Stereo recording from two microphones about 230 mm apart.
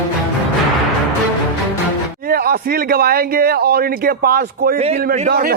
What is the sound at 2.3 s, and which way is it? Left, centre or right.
A man's voice, right.